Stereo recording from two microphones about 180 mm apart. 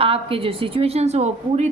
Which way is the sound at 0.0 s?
30° right (ahead or behind).